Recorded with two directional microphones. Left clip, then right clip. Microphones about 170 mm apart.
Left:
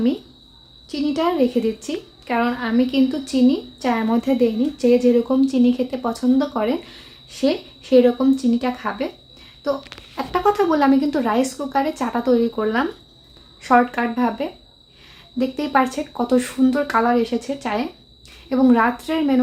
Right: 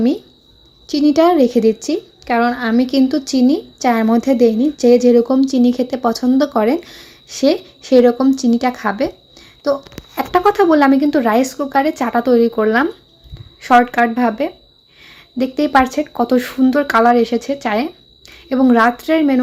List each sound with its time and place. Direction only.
0.9 s a woman's voice: 45° right (ahead or behind); by 19.4 s 30° right (ahead or behind)